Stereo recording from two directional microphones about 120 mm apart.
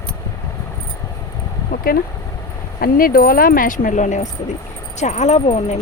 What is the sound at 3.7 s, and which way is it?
Speech, 90° left.